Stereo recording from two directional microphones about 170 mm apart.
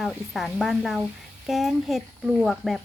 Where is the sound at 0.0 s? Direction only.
Centre (ahead or behind).